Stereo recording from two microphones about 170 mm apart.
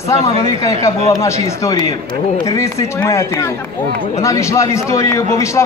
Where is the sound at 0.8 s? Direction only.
15° left (ahead or behind).